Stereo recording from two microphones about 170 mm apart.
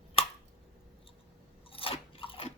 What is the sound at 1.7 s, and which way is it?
Crunch, 35° left (ahead or behind).